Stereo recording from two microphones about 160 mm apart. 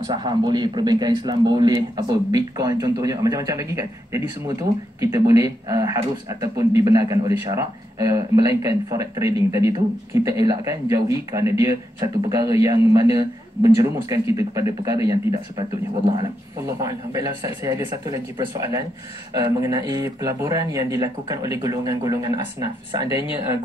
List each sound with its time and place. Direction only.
0.0 s a man's voice: 30° right (ahead or behind)
16.8 s a man's voice: 20° right (ahead or behind)